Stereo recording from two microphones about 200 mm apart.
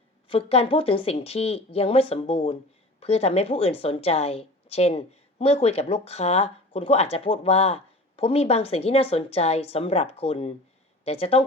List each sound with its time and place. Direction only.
0.3 s a woman's voice: 30° left (ahead or behind)